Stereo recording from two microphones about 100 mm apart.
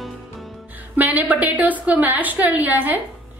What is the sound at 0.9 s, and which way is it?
A woman's voice, 15° right (ahead or behind).